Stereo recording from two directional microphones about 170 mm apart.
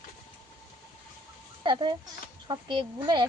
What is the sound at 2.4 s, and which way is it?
Speech, 30° right (ahead or behind).